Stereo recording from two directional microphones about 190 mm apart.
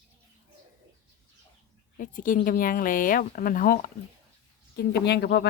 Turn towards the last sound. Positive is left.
turn(degrees=60)  # may be behind; listen again after turning